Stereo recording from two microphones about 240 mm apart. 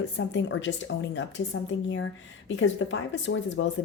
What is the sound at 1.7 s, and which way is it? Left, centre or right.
Speech, left.